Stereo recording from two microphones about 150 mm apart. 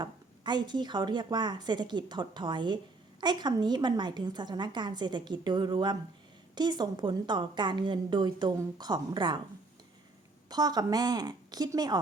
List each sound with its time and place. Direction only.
0.0 s a woman's voice: 30° right (ahead or behind)
10.5 s a woman's voice: 25° right (ahead or behind)